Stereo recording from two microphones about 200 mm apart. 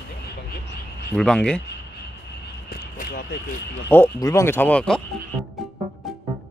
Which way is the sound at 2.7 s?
50° left (ahead or behind).